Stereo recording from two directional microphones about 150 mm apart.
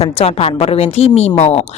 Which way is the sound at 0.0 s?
40° left (ahead or behind).